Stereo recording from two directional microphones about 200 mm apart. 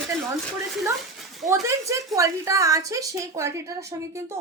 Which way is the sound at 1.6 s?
15° right (ahead or behind).